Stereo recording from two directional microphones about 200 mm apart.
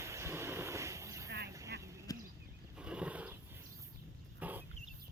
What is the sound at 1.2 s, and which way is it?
Vehicle, 55° right (ahead or behind).